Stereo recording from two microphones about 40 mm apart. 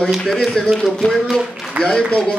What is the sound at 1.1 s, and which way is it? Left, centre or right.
Speech, centre.